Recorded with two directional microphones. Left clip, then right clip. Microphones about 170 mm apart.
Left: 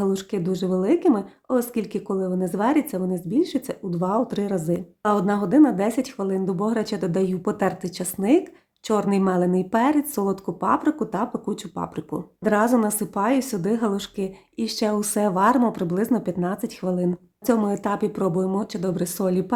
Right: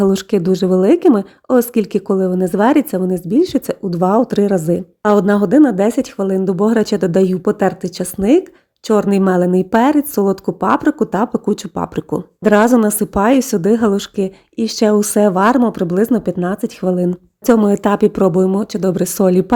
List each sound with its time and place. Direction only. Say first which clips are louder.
0.0 s speech: right 10 dB; 45° right (ahead or behind)